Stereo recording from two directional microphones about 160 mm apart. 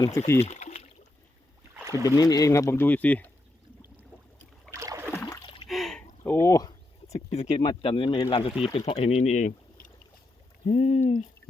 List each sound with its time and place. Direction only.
0.0 s speech: 20° left (ahead or behind)
0.4 s a sound: 45° left (ahead or behind)
1.7 s rowboat: 15° right (ahead or behind)
2.0 s speech: 20° left (ahead or behind)
4.7 s boat: 15° right (ahead or behind)
5.2 s splash: 25° left (ahead or behind)
5.6 s splash: centre (ahead or behind)
6.3 s speech: 20° left (ahead or behind)
7.1 s speech: 40° left (ahead or behind)